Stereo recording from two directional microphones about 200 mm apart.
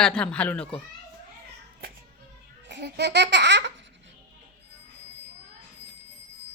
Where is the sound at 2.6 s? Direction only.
55° right (ahead or behind).